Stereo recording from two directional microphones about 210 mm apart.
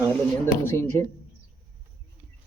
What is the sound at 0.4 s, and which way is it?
Speech, 10° left (ahead or behind).